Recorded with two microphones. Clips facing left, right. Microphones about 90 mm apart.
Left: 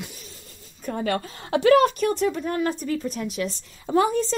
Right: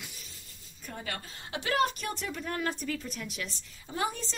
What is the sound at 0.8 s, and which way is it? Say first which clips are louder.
A woman's voice: left 14 dB; 60° left (ahead or behind).